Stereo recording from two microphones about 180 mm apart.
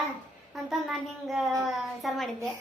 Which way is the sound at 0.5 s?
Centre (ahead or behind).